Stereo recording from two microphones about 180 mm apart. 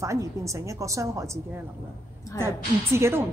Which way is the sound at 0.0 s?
15° right (ahead or behind).